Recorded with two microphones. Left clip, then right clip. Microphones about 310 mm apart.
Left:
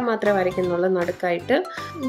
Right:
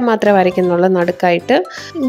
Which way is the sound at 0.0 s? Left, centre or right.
Right.